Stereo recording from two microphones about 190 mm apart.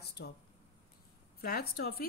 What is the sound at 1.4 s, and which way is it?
Speech, 55° left (ahead or behind).